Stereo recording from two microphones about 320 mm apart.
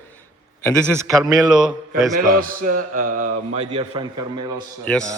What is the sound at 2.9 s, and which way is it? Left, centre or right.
Speech, right.